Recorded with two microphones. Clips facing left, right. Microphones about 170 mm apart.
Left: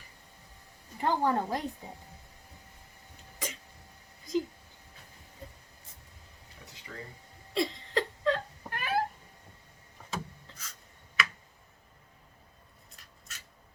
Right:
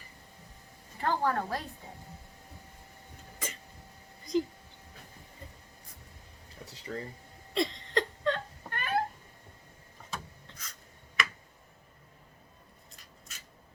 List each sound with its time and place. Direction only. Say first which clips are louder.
0.9 s speech: left 2 dB; 15° left (ahead or behind)
3.3 s cough: left 2 dB; centre (ahead or behind)
4.3 s speech: right 1 dB; centre (ahead or behind)
6.9 s speech: right 7 dB; 35° right (ahead or behind)
7.5 s wail: even; 5° left (ahead or behind)
10.1 s rub: left 4 dB; centre (ahead or behind)